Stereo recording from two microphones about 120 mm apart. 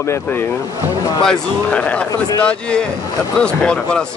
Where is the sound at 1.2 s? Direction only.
5° left (ahead or behind).